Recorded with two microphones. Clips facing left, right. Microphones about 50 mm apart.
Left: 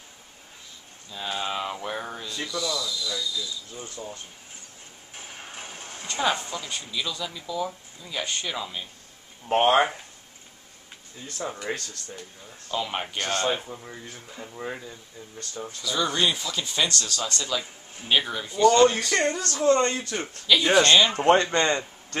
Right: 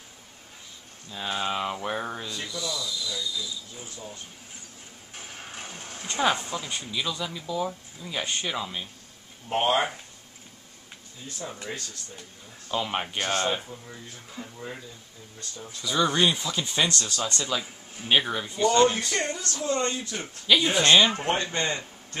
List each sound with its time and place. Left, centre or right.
1.1 s a sound: centre
2.4 s speech: centre
5.1 s music: centre
6.0 s speech: centre
9.5 s speech: left
11.7 s speech: left
12.6 s speech: centre
13.7 s speech: left
14.4 s speech: centre
15.8 s speech: centre
19.0 s speech: left
20.5 s speech: centre
21.3 s a man's voice: left